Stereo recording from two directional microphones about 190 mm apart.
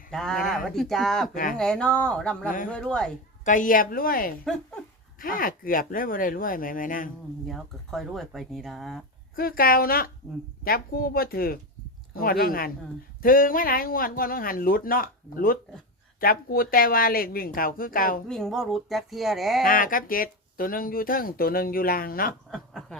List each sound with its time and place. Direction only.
0.1 s speech: 5° left (ahead or behind)
3.4 s speech: 45° left (ahead or behind)
7.4 s speech: centre (ahead or behind)
9.3 s speech: 50° left (ahead or behind)
18.3 s speech: centre (ahead or behind)
19.6 s speech: 45° left (ahead or behind)
22.5 s snicker: centre (ahead or behind)